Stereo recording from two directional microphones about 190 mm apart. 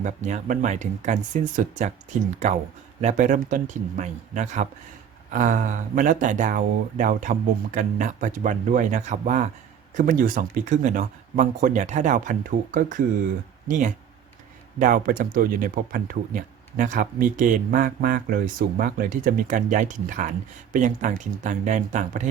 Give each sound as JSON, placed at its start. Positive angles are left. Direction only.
{"t": 0.0, "sound": "speech", "side_deg": -40}
{"t": 3.0, "sound": "speech", "side_deg": -40}